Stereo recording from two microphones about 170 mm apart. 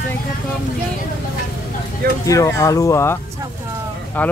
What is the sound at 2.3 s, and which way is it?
Speech, 20° left (ahead or behind).